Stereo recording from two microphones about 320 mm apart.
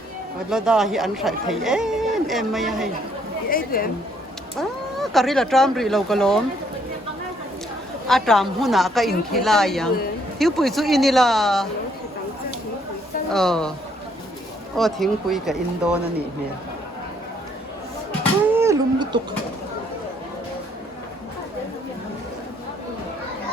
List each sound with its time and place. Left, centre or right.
0.5 s speech: centre
3.5 s speech: left
4.9 s speech: centre
8.0 s speech: centre
13.3 s speech: centre
14.8 s speech: centre
18.5 s a sound: centre